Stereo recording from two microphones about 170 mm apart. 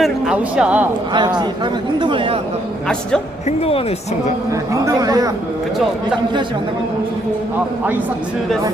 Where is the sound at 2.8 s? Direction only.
5° left (ahead or behind).